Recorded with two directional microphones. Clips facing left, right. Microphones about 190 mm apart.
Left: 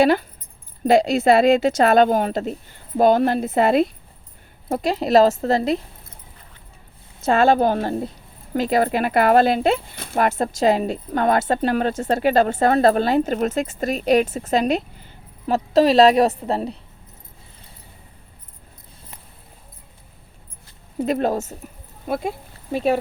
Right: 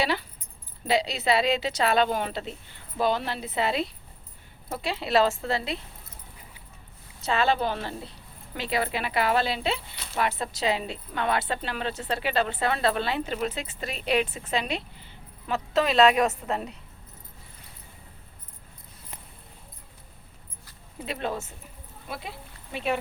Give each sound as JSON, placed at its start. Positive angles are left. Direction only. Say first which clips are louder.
{"t": 0.0, "sound": "speech", "louder": "left 11 dB", "side_deg": 50}
{"t": 7.2, "sound": "speech", "louder": "left 9 dB", "side_deg": 50}
{"t": 21.0, "sound": "speech", "louder": "left 11 dB", "side_deg": 45}